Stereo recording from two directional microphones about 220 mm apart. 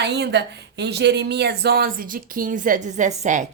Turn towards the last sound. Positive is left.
turn(degrees=-35)  # may be behind; listen again after turning